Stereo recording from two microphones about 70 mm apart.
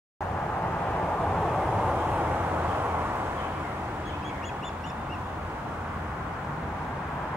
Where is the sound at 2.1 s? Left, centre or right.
Right.